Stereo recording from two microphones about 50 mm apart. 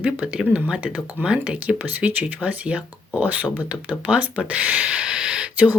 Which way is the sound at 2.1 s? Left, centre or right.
Right.